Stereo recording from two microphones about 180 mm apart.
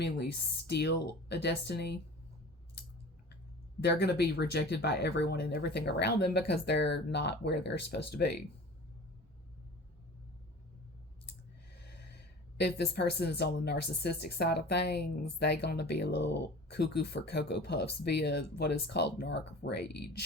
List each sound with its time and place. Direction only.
0.7 s speech: 70° left (ahead or behind)
3.8 s speech: 65° left (ahead or behind)
12.5 s speech: 65° left (ahead or behind)